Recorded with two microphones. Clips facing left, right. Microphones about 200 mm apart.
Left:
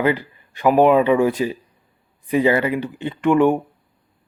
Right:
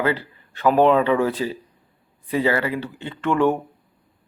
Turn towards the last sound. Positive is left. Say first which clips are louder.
# left 4 dB
turn(degrees=15)  # may be behind; listen again after turning